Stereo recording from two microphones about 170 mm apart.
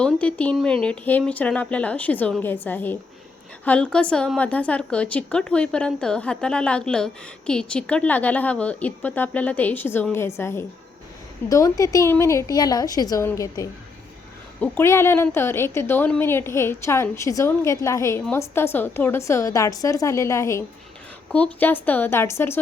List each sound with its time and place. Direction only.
0.0 s a woman's voice: 5° left (ahead or behind)